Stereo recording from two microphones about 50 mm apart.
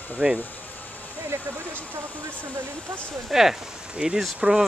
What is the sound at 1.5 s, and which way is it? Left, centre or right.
Speech, right.